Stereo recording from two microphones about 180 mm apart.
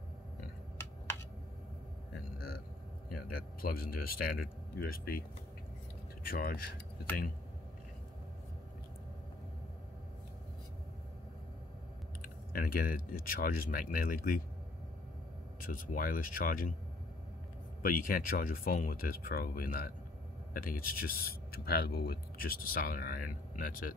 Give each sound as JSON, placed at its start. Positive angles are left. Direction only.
{"t": 3.1, "sound": "speech", "side_deg": 55}
{"t": 6.2, "sound": "speech", "side_deg": 55}
{"t": 12.2, "sound": "speech", "side_deg": 55}
{"t": 15.6, "sound": "speech", "side_deg": 50}
{"t": 17.8, "sound": "speech", "side_deg": 50}